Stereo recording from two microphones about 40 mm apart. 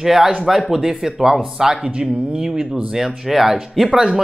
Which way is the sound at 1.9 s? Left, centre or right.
Right.